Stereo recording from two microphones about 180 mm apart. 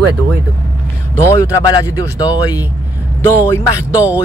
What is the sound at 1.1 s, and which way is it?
Speech, 15° left (ahead or behind).